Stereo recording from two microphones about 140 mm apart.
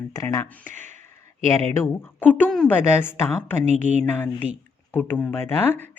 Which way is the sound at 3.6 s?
60° right (ahead or behind).